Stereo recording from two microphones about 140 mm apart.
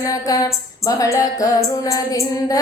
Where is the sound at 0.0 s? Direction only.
25° left (ahead or behind).